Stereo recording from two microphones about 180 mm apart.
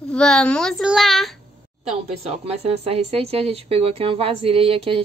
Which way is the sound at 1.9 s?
35° right (ahead or behind).